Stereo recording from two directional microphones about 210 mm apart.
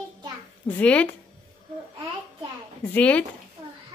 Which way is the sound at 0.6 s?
5° left (ahead or behind).